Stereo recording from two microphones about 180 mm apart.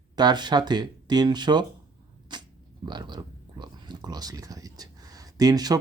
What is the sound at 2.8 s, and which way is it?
Speech, 25° right (ahead or behind).